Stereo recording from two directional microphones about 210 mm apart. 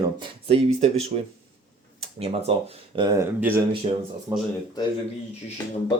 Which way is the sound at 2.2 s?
30° right (ahead or behind).